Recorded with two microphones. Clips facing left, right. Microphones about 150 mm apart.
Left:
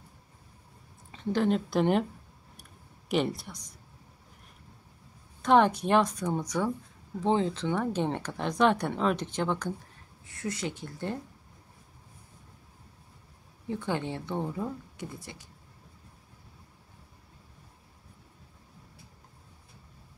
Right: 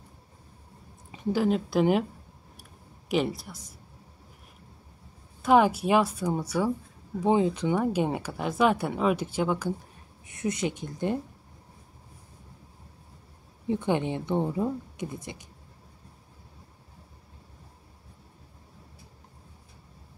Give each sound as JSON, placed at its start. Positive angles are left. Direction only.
{"t": 1.1, "sound": "speech", "side_deg": -10}
{"t": 3.1, "sound": "speech", "side_deg": 0}
{"t": 5.4, "sound": "speech", "side_deg": -5}
{"t": 10.2, "sound": "speech", "side_deg": -20}
{"t": 13.7, "sound": "speech", "side_deg": -20}